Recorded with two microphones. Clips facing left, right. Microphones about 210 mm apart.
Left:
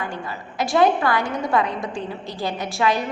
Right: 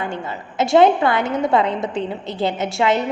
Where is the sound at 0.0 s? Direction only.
25° right (ahead or behind).